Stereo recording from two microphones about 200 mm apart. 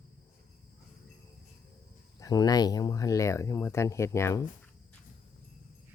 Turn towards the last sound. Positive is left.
turn(degrees=15)  # may be behind; listen again after turning